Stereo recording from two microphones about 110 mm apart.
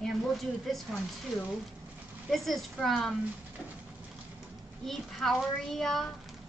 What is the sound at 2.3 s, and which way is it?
Speech, centre (ahead or behind).